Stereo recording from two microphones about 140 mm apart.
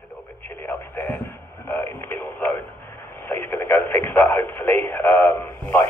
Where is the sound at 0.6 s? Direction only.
15° left (ahead or behind).